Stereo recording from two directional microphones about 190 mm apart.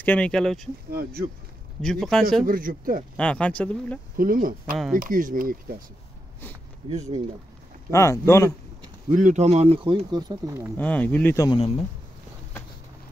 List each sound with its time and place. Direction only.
0.0 s speech: 5° left (ahead or behind)
0.9 s speech: 55° right (ahead or behind)
1.8 s speech: 5° left (ahead or behind)
2.4 s speech: 45° right (ahead or behind)
3.2 s speech: 5° left (ahead or behind)
4.2 s speech: 45° right (ahead or behind)
4.6 s speech: centre (ahead or behind)
4.9 s speech: 45° right (ahead or behind)
6.8 s speech: 20° right (ahead or behind)
7.9 s speech: 15° left (ahead or behind)
9.1 s speech: 40° right (ahead or behind); by 10.7 s 15° right (ahead or behind)
10.8 s speech: 10° left (ahead or behind)
11.4 s speech: 25° left (ahead or behind)